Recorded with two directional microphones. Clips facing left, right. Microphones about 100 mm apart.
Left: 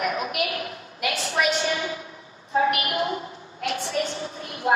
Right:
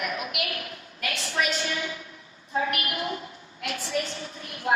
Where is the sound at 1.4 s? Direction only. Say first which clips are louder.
Left 5 dB; 30° left (ahead or behind).